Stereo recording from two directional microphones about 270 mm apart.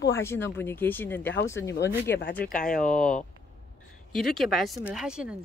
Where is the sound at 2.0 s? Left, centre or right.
Left.